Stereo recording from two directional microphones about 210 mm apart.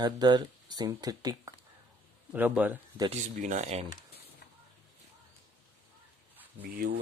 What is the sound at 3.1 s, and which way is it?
Speech, 35° right (ahead or behind).